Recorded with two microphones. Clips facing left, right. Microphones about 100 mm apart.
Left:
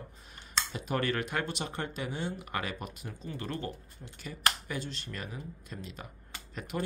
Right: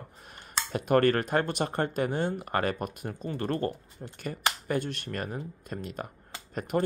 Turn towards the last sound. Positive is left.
turn(degrees=-45)  # may be behind; listen again after turning